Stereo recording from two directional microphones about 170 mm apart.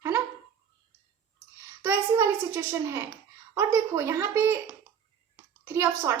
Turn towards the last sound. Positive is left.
turn(degrees=-15)  # may be behind; listen again after turning